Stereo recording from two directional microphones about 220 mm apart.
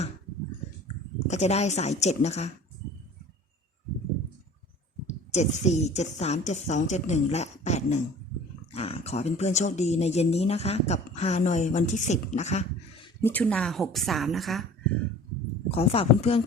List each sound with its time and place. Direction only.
1.3 s speech: 30° left (ahead or behind)
5.3 s speech: 30° left (ahead or behind)
13.2 s a woman's voice: 5° left (ahead or behind)
15.7 s speech: 25° left (ahead or behind)